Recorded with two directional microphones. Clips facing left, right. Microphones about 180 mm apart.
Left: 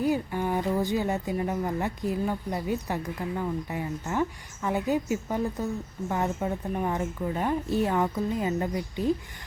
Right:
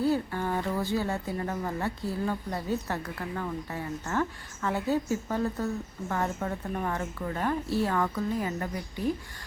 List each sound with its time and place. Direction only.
0.0 s speech: 15° left (ahead or behind)